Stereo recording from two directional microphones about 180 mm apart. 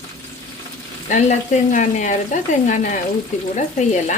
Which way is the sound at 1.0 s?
45° left (ahead or behind).